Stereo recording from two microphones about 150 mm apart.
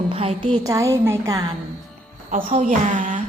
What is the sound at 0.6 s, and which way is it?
Speech, 20° right (ahead or behind).